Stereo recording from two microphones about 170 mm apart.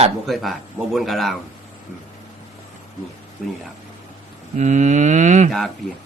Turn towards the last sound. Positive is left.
turn(degrees=-45)  # may be behind; listen again after turning